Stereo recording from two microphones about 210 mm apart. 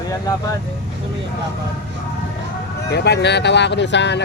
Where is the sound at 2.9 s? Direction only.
50° left (ahead or behind).